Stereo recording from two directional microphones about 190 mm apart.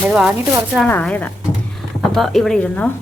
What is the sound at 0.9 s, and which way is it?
Speech, 10° left (ahead or behind).